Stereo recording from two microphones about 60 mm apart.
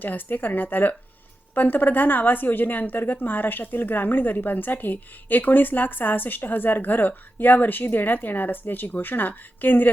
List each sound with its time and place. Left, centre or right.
0.0 s a woman's voice: left